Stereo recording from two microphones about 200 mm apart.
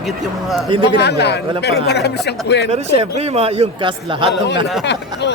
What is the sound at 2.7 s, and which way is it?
A man's voice, 30° right (ahead or behind).